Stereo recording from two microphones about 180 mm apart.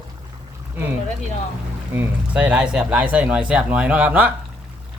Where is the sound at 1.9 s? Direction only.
5° right (ahead or behind).